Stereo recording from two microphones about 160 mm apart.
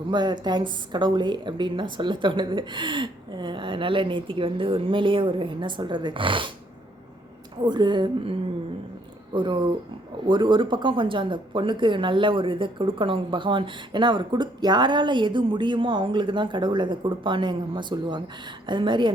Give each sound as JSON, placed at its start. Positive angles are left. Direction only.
{"t": 0.1, "sound": "a woman's voice", "side_deg": -25}
{"t": 7.6, "sound": "a woman's voice", "side_deg": -25}